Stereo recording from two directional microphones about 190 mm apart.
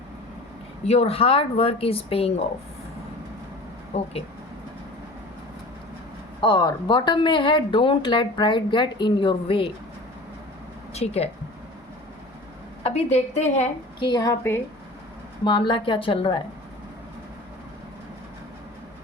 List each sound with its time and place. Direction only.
0.9 s speech: 30° left (ahead or behind)
3.9 s speech: 35° left (ahead or behind)
6.4 s speech: 25° left (ahead or behind)
10.9 s speech: 35° left (ahead or behind)
12.8 s speech: 35° left (ahead or behind)
14.0 s speech: 20° left (ahead or behind)